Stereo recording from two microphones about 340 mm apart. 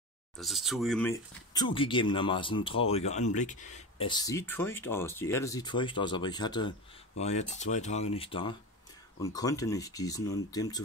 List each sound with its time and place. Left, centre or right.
0.4 s speech: centre